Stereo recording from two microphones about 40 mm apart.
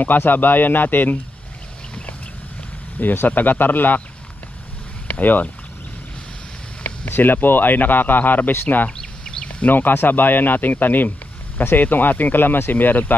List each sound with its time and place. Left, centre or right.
0.0 s a man's voice: left
3.0 s a man's voice: left
5.0 s speech: left
7.1 s a man's voice: left
8.9 s a sound: left
9.7 s a man's voice: left